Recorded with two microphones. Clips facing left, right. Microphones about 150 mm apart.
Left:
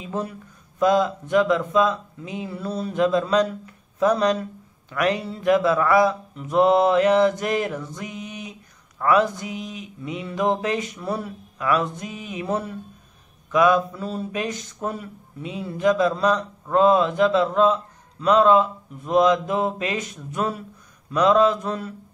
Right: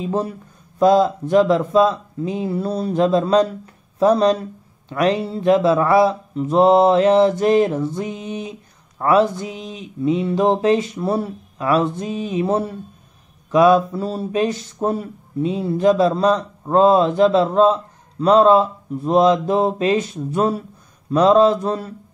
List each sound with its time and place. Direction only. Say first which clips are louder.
0.0 s speech: right 6 dB; 35° right (ahead or behind)